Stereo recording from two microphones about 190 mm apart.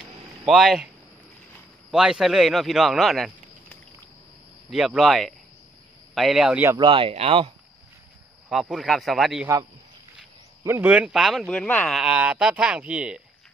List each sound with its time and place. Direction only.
0.5 s speech: centre (ahead or behind)
1.9 s speech: 5° right (ahead or behind)
6.8 s speech: 30° right (ahead or behind)
8.5 s speech: centre (ahead or behind)
10.6 s speech: 15° right (ahead or behind)